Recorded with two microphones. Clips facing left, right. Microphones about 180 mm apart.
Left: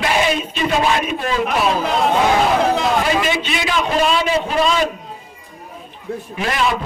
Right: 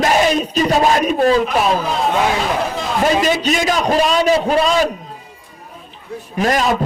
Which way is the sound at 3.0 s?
40° right (ahead or behind).